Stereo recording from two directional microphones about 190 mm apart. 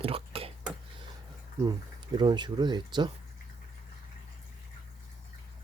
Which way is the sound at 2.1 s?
25° right (ahead or behind).